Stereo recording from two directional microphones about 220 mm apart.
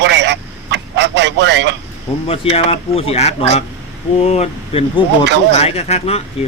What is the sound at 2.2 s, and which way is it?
Speech, 25° left (ahead or behind).